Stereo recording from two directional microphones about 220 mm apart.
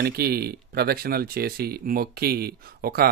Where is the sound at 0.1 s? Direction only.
45° right (ahead or behind).